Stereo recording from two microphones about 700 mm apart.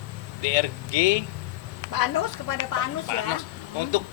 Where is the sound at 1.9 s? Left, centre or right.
Left.